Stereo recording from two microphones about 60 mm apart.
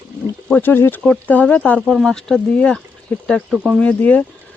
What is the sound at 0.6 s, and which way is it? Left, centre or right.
Speech, left.